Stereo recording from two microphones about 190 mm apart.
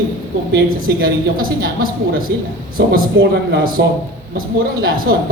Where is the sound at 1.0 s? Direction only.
50° right (ahead or behind).